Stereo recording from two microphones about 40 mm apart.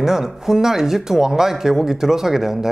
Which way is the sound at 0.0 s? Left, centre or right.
Centre.